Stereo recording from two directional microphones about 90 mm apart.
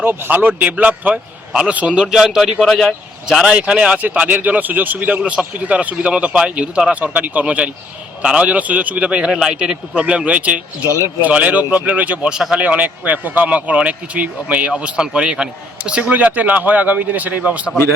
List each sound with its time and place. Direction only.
0.0 s a man's voice: 25° right (ahead or behind); by 2.9 s 5° left (ahead or behind)
3.4 s speech: 10° right (ahead or behind)